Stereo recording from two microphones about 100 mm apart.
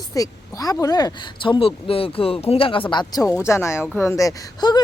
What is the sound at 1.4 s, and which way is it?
Speech, 60° left (ahead or behind).